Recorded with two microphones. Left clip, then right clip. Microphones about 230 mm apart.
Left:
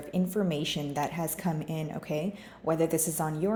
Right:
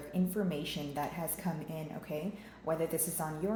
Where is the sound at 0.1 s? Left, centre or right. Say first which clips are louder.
Left 6 dB; left.